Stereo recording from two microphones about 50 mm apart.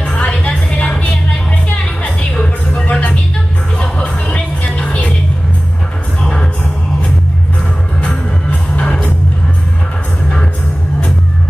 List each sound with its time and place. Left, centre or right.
0.0 s music: left
2.3 s a sound: centre
3.7 s music: left
6.2 s music: centre
8.0 s music: left